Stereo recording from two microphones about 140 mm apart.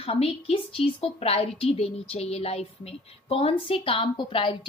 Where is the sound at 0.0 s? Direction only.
45° left (ahead or behind).